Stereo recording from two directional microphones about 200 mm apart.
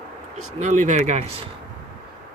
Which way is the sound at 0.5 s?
35° right (ahead or behind).